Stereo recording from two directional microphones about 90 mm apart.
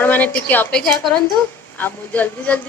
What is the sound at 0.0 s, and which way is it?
Speech, 20° left (ahead or behind).